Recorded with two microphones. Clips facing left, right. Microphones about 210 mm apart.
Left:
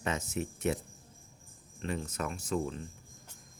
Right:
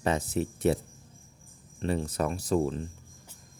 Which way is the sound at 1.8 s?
35° right (ahead or behind).